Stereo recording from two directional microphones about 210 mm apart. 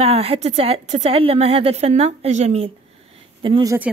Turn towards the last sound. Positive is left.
turn(degrees=-25)  # may be behind; listen again after turning